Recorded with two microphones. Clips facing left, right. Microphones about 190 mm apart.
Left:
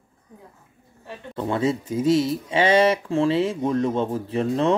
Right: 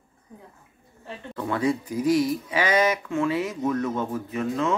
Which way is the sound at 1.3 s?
25° left (ahead or behind).